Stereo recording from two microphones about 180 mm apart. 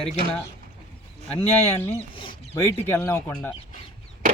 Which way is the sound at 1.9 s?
30° left (ahead or behind).